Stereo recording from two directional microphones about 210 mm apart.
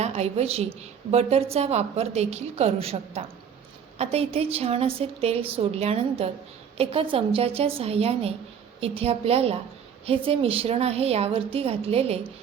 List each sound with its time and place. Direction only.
0.0 s a woman's voice: 30° right (ahead or behind)